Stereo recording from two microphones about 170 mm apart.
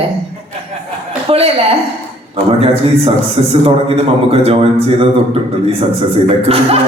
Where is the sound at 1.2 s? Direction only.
35° right (ahead or behind).